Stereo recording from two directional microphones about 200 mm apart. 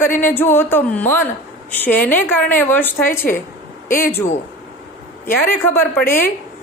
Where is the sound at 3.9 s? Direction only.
45° left (ahead or behind).